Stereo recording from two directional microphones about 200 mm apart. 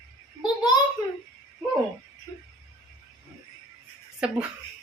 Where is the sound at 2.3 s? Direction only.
15° left (ahead or behind).